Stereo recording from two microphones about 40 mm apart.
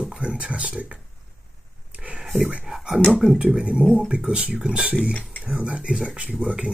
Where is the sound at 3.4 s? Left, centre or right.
Right.